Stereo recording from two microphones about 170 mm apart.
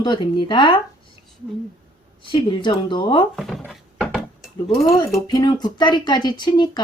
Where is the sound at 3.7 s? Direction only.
Centre (ahead or behind).